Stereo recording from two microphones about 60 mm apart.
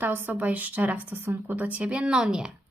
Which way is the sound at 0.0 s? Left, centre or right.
Right.